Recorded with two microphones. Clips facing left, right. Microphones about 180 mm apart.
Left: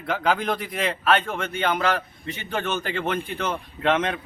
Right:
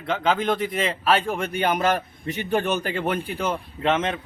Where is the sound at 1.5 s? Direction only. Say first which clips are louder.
Right 1 dB; 15° right (ahead or behind).